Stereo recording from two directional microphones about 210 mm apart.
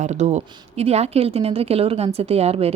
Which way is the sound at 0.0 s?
35° right (ahead or behind).